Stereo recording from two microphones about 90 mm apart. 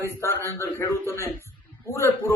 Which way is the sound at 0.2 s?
30° left (ahead or behind).